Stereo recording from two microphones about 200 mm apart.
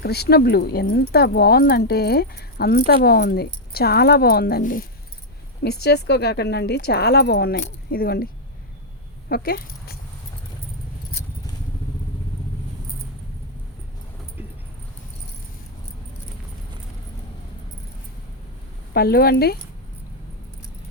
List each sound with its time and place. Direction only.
0.0 s speech: 55° left (ahead or behind)
9.3 s speech: 50° left (ahead or behind)
18.9 s speech: 50° left (ahead or behind)